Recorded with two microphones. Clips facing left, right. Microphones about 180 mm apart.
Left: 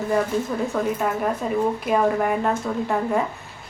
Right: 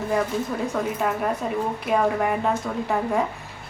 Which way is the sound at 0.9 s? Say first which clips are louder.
Left 1 dB; centre (ahead or behind).